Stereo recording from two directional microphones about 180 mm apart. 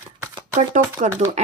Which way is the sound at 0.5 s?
45° right (ahead or behind).